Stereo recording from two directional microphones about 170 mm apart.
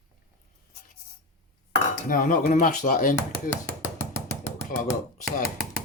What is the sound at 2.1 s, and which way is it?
Speech, 55° left (ahead or behind).